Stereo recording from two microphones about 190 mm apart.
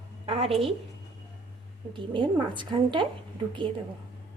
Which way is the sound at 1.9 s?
25° right (ahead or behind).